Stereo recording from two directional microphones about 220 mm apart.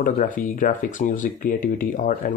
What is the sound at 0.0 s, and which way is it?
Speech, 40° left (ahead or behind).